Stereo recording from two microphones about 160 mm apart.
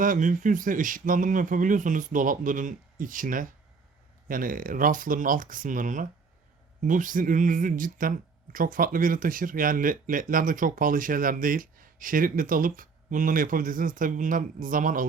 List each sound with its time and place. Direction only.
0.0 s speech: 55° right (ahead or behind)